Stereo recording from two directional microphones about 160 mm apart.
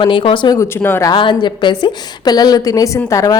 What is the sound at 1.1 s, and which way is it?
A woman's voice, 30° left (ahead or behind).